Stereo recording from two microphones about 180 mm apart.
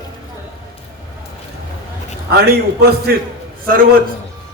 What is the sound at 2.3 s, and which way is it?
A man's voice, 60° right (ahead or behind).